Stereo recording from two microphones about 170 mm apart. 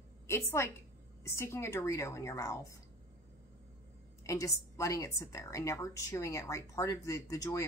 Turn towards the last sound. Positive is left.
turn(degrees=20)  # may be behind; listen again after turning